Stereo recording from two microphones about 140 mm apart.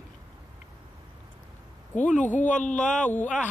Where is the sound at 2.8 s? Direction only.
65° left (ahead or behind).